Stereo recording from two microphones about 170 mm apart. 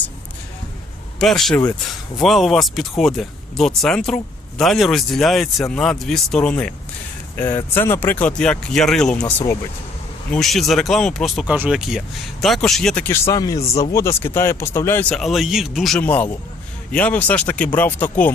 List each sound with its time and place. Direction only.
1.2 s speech: centre (ahead or behind)
10.3 s speech: centre (ahead or behind)
15.1 s speech: centre (ahead or behind)